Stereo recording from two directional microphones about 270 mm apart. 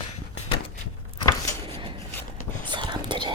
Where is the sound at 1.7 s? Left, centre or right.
Centre.